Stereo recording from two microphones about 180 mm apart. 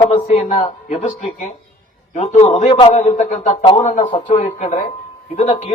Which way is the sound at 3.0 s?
40° left (ahead or behind).